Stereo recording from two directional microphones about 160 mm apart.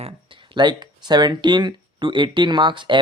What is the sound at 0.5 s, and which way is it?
Speech, 30° right (ahead or behind).